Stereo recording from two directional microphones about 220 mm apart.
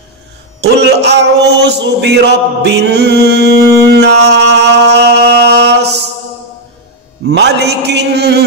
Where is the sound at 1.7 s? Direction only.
50° right (ahead or behind).